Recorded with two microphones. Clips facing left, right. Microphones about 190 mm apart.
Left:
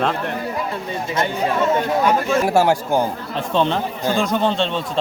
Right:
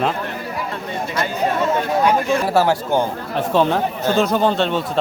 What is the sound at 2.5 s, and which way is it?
Speech, 15° left (ahead or behind).